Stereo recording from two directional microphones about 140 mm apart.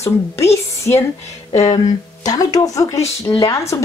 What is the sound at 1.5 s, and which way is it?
Speech, 50° left (ahead or behind).